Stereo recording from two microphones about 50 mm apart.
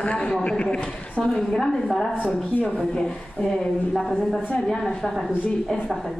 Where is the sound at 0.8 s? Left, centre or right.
Centre.